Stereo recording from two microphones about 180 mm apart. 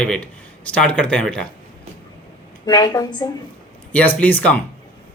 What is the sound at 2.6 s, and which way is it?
Speech, 25° left (ahead or behind).